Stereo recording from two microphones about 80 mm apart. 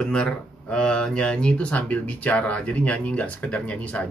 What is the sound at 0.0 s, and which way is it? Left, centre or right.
Speech, centre.